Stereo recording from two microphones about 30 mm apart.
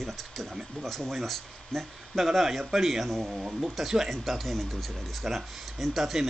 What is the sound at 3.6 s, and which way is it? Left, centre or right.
Speech, centre.